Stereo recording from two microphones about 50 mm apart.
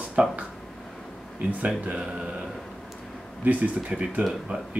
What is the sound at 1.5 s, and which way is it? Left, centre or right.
Speech, right.